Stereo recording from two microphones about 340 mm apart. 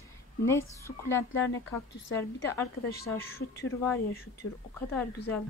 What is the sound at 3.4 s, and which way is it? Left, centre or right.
Speech, left.